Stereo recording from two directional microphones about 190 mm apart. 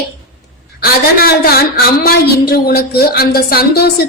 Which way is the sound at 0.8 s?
55° left (ahead or behind).